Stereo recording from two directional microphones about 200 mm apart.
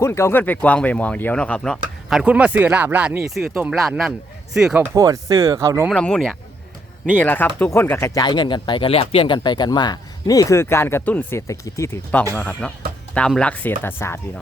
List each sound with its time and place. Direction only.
0.0 s speech: 10° left (ahead or behind); by 4.9 s 5° right (ahead or behind)
4.9 s speech: 15° right (ahead or behind)
5.9 s speech: 5° left (ahead or behind)